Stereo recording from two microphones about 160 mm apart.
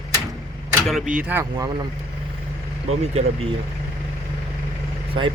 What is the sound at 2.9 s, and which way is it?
Speech, 40° right (ahead or behind).